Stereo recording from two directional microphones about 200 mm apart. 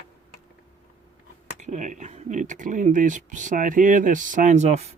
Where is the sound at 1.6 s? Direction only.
35° right (ahead or behind).